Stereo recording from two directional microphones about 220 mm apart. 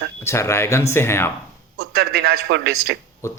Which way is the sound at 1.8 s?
50° right (ahead or behind).